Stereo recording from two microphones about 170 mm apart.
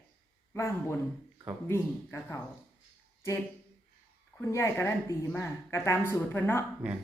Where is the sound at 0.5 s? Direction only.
15° left (ahead or behind).